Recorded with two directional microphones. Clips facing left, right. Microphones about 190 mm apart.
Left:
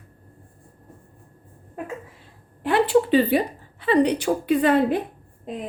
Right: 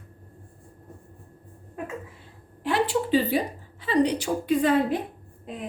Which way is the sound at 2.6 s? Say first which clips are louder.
Left 6 dB; 60° left (ahead or behind).